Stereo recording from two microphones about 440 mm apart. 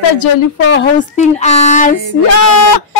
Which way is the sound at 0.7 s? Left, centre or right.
Centre.